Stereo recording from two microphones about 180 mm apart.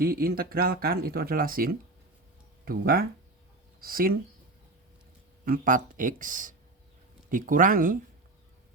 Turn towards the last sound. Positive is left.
turn(degrees=-50)  # may be behind; listen again after turning